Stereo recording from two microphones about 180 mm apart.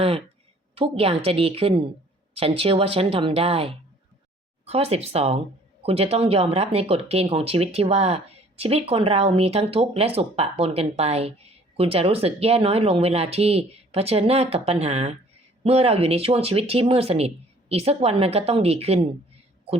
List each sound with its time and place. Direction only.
0.8 s speech: 30° right (ahead or behind)